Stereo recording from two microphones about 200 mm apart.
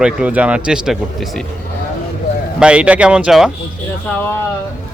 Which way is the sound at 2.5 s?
5° right (ahead or behind).